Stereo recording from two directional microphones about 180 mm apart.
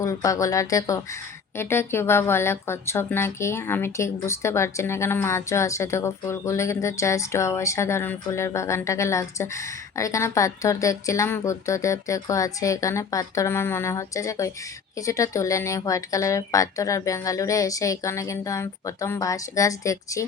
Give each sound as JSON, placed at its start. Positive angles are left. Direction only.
{"t": 0.0, "sound": "speech", "side_deg": 20}